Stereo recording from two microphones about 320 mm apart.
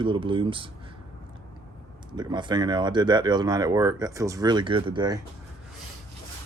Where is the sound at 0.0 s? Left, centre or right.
Centre.